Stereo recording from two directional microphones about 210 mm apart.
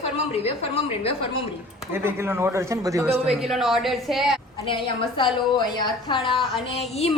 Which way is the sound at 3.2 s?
Centre (ahead or behind).